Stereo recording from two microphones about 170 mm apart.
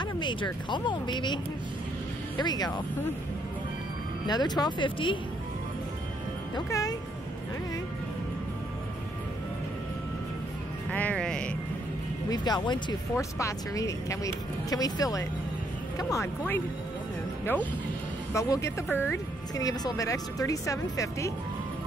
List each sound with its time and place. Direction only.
0.0 s speech: 25° left (ahead or behind)
2.4 s speech: 25° left (ahead or behind)
4.3 s speech: 25° left (ahead or behind)
6.5 s speech: 20° left (ahead or behind)
10.9 s speech: 10° left (ahead or behind)
12.3 s speech: 25° left (ahead or behind)